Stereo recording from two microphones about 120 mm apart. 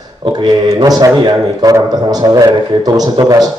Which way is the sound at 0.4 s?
35° right (ahead or behind).